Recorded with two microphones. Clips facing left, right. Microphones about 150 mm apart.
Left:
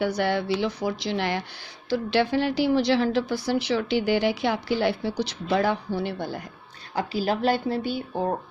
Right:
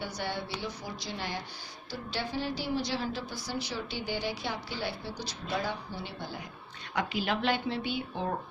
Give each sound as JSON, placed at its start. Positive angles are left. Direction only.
{"t": 0.0, "sound": "a woman's voice", "side_deg": 75}
{"t": 6.9, "sound": "speech", "side_deg": 35}